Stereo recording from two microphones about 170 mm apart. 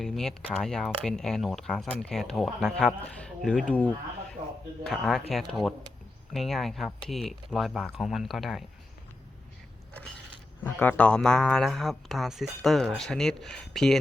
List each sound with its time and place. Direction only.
0.0 s speech: 5° left (ahead or behind)
4.4 s speech: 25° right (ahead or behind)
4.9 s speech: centre (ahead or behind)
10.6 s speech: 10° left (ahead or behind)